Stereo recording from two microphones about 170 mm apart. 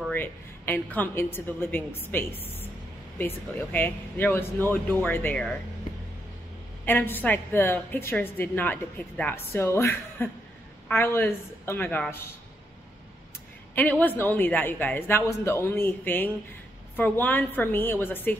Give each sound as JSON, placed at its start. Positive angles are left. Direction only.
{"t": 0.1, "sound": "a woman's voice", "side_deg": 10}
{"t": 6.9, "sound": "a woman's voice", "side_deg": 10}
{"t": 13.7, "sound": "a woman's voice", "side_deg": 10}